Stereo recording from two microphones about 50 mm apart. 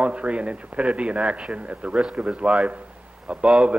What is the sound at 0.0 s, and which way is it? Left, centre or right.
A man's voice, right.